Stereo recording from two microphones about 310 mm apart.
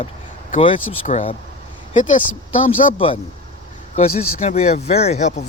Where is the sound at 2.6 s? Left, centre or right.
Centre.